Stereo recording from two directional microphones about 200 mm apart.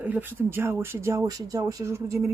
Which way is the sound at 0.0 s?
10° right (ahead or behind).